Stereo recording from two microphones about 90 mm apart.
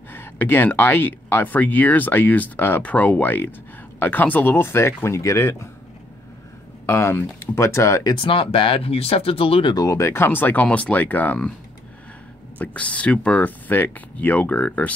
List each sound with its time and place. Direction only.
0.1 s speech: 25° left (ahead or behind)
6.9 s speech: 30° left (ahead or behind)
8.0 s speech: 60° left (ahead or behind); by 9.8 s 85° left
9.8 s speech: 35° left (ahead or behind); by 11.3 s 20° left (ahead or behind)
12.5 s speech: 15° left (ahead or behind)